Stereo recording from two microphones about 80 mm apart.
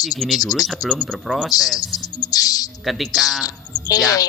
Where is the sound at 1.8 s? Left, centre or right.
Left.